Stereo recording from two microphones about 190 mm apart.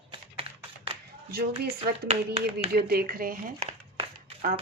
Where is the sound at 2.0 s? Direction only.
30° right (ahead or behind).